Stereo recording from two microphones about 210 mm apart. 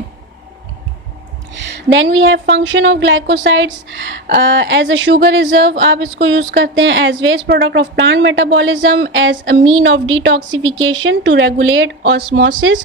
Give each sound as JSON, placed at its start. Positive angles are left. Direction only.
{"t": 1.5, "sound": "speech", "side_deg": -60}